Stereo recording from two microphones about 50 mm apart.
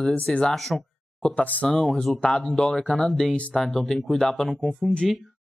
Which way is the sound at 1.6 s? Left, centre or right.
Centre.